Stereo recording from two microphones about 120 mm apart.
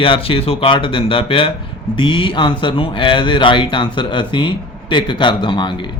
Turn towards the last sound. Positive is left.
turn(degrees=40)  # may be behind; listen again after turning